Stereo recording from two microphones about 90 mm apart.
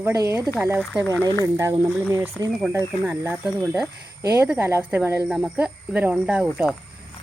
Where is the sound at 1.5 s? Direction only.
35° right (ahead or behind).